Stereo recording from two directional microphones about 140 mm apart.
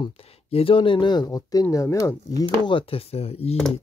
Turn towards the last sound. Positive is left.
turn(degrees=45)  # may be behind; listen again after turning